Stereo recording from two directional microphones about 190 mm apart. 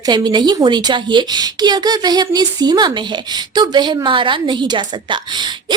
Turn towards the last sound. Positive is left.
turn(degrees=-25)  # may be behind; listen again after turning